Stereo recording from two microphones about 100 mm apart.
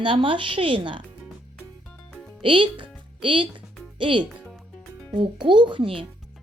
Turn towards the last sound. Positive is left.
turn(degrees=-60)  # may be behind; listen again after turning